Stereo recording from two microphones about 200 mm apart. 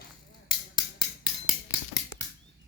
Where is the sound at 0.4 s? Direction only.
20° left (ahead or behind).